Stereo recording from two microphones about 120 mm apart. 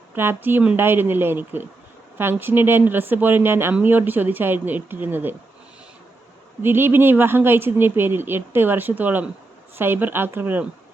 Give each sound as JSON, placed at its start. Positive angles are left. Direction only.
{"t": 0.2, "sound": "a woman's voice", "side_deg": -20}
{"t": 6.6, "sound": "a woman's voice", "side_deg": -20}